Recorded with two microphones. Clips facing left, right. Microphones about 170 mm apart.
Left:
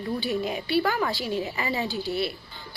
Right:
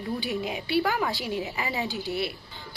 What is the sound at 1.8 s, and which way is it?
Speech, 15° right (ahead or behind).